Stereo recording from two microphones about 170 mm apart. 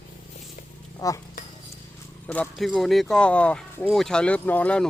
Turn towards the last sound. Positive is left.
turn(degrees=5)  # may be behind; listen again after turning